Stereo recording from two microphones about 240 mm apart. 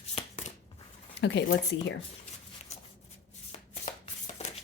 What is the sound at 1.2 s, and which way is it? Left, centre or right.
Speech, left.